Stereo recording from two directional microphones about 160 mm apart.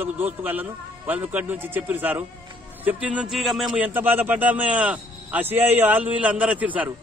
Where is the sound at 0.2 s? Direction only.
10° right (ahead or behind).